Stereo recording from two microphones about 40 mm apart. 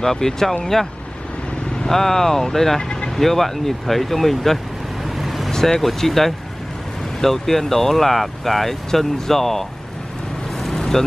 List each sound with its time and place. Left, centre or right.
0.0 s speech: centre
1.8 s speech: centre
2.8 s vehicle: left
3.2 s speech: centre
5.2 s vehicle: centre
5.5 s vehicle: centre
5.9 s speech: centre
10.6 s vehicle: centre